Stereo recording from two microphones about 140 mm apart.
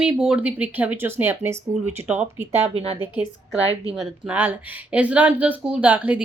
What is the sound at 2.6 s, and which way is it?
Speech, 45° right (ahead or behind).